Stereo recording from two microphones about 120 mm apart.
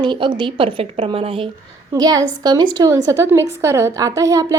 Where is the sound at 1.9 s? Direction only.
30° right (ahead or behind).